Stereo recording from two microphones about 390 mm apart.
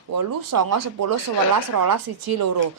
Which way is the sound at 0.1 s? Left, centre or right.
Right.